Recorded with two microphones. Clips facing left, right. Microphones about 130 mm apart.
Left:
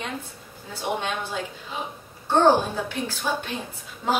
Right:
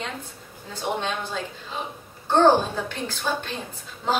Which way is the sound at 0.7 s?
10° left (ahead or behind).